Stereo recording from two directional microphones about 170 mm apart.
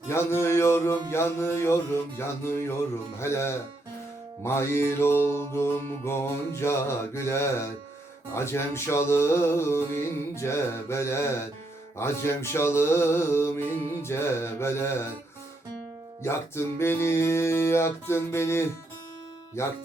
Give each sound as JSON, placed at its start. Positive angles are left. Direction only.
{"t": 0.1, "sound": "a sound", "side_deg": 15}
{"t": 1.1, "sound": "music", "side_deg": 15}
{"t": 16.2, "sound": "music", "side_deg": 15}